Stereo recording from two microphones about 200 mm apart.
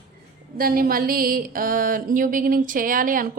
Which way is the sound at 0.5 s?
45° right (ahead or behind).